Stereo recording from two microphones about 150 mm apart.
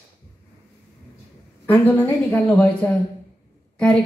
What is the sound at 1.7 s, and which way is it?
A man's voice, 15° left (ahead or behind).